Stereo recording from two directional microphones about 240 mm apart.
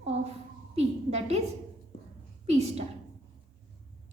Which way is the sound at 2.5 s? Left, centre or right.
Right.